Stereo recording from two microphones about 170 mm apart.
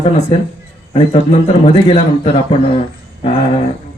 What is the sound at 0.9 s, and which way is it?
A man's voice, 35° left (ahead or behind).